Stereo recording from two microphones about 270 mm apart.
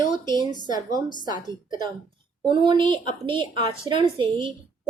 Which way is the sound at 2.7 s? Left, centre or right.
Centre.